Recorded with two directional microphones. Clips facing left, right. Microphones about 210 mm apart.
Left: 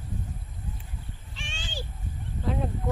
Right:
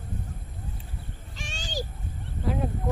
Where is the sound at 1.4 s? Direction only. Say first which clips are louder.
Right 5 dB; 40° right (ahead or behind).